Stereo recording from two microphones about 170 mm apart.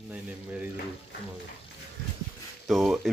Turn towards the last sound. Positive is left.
turn(degrees=0)  # may be behind; listen again after turning